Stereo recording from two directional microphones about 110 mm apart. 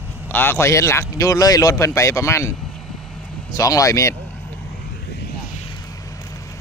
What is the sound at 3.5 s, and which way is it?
Speech, 30° left (ahead or behind).